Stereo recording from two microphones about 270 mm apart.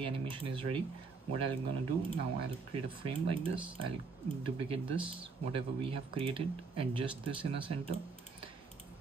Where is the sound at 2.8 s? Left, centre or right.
Centre.